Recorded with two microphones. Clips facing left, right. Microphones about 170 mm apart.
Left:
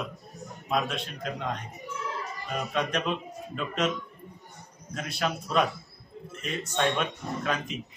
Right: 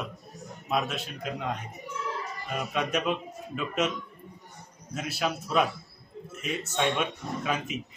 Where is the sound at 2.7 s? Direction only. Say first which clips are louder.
Right 1 dB; 5° right (ahead or behind).